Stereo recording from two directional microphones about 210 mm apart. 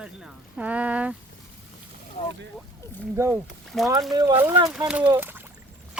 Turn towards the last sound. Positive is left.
turn(degrees=-10)  # may be behind; listen again after turning